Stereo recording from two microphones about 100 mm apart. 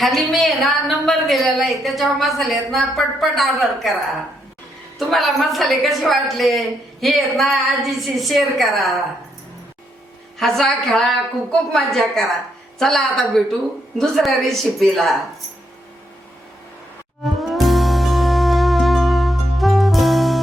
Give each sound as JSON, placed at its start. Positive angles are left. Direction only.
{"t": 0.0, "sound": "a woman's voice", "side_deg": 0}
{"t": 4.9, "sound": "a woman's voice", "side_deg": 0}
{"t": 10.3, "sound": "a woman's voice", "side_deg": 5}
{"t": 17.2, "sound": "music", "side_deg": 0}